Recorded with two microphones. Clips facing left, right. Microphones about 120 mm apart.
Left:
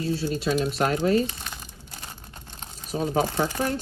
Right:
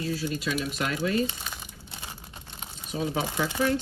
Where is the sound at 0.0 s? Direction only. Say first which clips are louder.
Left 4 dB; 30° left (ahead or behind).